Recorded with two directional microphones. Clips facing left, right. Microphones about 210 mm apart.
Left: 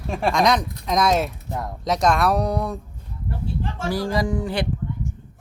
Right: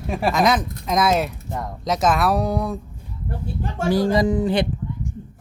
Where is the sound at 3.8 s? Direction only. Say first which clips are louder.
Right 6 dB; 20° right (ahead or behind).